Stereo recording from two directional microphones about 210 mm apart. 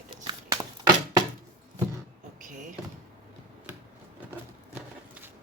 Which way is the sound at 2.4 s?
40° right (ahead or behind).